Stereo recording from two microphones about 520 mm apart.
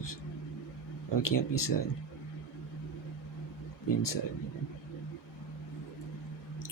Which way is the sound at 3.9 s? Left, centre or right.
Left.